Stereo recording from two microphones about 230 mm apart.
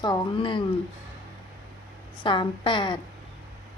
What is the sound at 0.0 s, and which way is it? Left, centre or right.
Speech, centre.